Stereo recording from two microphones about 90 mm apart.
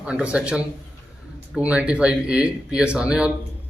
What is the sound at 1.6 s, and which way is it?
A man's voice, 15° right (ahead or behind).